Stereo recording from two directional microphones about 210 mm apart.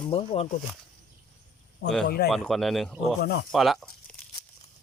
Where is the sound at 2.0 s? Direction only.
50° left (ahead or behind).